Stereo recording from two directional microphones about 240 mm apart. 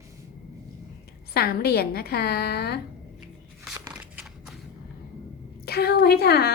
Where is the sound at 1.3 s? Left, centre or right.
Left.